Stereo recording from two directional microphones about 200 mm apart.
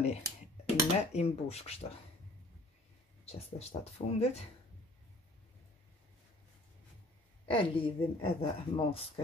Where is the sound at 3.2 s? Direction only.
30° left (ahead or behind).